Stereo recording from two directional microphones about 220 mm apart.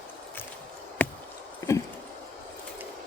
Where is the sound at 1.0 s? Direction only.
5° left (ahead or behind).